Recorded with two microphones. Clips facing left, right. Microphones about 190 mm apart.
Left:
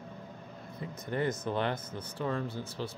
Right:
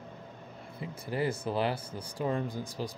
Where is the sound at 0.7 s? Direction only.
10° right (ahead or behind).